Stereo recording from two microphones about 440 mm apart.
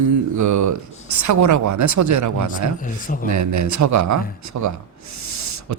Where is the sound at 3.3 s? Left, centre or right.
Right.